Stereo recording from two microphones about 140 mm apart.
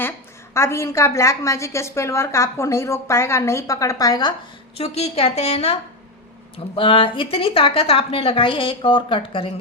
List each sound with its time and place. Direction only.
0.5 s a woman's voice: 20° left (ahead or behind)
4.8 s a woman's voice: 45° left (ahead or behind)
6.7 s a woman's voice: 40° left (ahead or behind)